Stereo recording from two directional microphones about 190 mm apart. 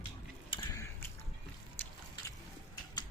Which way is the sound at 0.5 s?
15° left (ahead or behind).